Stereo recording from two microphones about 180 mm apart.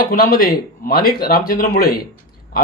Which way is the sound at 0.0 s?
55° left (ahead or behind).